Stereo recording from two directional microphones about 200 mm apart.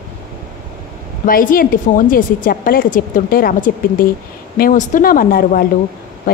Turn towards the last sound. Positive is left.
turn(degrees=45)  # may be behind; listen again after turning